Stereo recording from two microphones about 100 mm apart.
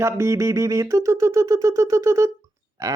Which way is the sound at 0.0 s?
30° right (ahead or behind).